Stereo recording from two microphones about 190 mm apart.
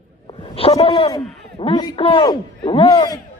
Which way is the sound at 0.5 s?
30° left (ahead or behind).